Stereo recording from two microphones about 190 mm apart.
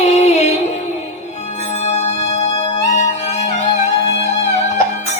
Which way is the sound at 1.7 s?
35° left (ahead or behind).